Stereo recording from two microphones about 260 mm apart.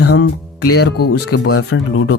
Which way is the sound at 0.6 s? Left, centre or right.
Left.